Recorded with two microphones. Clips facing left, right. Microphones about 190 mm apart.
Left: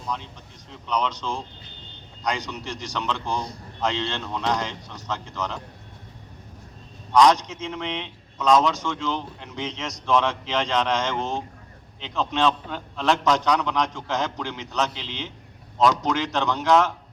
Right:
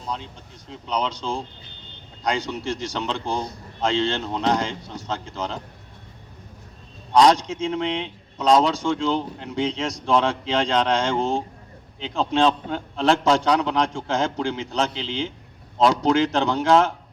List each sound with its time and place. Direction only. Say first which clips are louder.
0.7 s speech: even; 30° right (ahead or behind)
7.1 s speech: right 1 dB; 30° right (ahead or behind)